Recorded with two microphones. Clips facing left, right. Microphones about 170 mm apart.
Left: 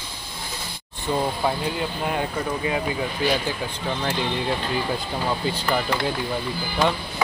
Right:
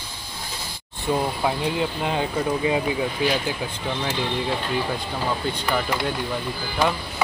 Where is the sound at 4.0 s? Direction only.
Centre (ahead or behind).